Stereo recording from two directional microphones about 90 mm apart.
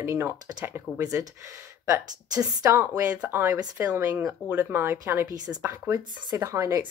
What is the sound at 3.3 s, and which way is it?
Speech, 25° right (ahead or behind).